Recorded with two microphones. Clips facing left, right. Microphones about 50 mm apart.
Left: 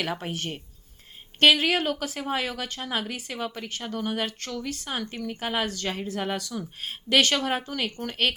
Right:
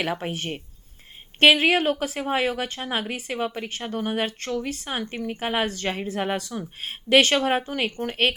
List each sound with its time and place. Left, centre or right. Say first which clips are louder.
0.0 s a woman's voice: right 3 dB; right